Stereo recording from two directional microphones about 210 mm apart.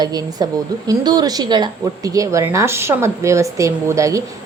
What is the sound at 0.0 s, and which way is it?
Speech, 20° right (ahead or behind).